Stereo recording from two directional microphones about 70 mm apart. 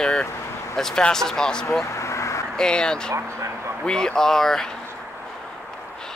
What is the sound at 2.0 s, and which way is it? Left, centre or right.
Vehicle, left.